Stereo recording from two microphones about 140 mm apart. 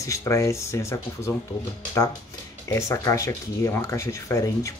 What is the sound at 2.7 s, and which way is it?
Speech, 20° left (ahead or behind).